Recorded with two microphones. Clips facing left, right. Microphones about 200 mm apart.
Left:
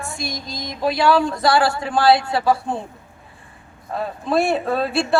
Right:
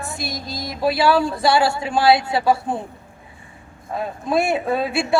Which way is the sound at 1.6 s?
25° right (ahead or behind).